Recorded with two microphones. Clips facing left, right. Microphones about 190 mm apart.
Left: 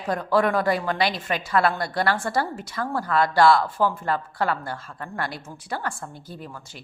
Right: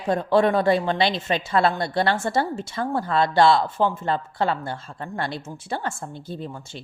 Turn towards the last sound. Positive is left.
turn(degrees=-25)  # may be behind; listen again after turning